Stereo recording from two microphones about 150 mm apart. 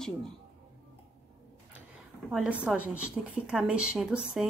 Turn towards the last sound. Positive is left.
turn(degrees=0)  # may be behind; listen again after turning